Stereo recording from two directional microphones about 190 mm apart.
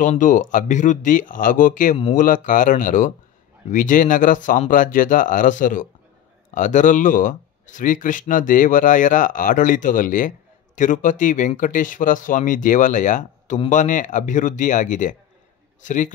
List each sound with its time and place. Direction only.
0.0 s speech: 40° left (ahead or behind)